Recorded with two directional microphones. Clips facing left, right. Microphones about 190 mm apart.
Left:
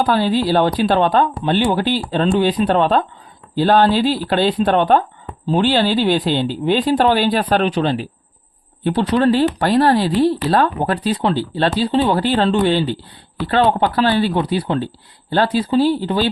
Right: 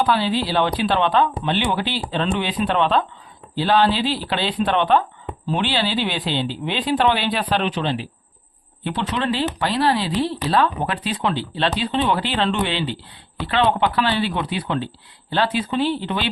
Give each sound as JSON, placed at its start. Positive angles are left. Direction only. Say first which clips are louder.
{"t": 0.0, "sound": "speech", "louder": "left 4 dB", "side_deg": 45}